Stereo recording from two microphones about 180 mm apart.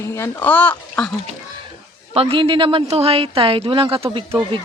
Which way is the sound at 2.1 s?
30° right (ahead or behind).